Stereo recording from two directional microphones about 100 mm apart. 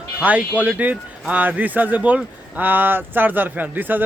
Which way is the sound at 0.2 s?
15° right (ahead or behind).